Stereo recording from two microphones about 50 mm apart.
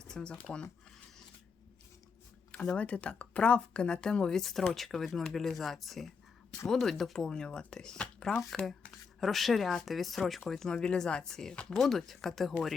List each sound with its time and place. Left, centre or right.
0.0 s squish: centre
0.3 s speech: centre
2.5 s speech: left
9.2 s speech: centre